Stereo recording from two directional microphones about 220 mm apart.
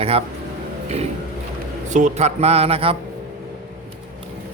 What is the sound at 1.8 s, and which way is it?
A man's voice, 35° right (ahead or behind).